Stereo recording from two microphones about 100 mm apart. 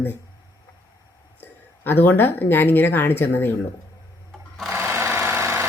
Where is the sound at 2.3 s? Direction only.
20° left (ahead or behind).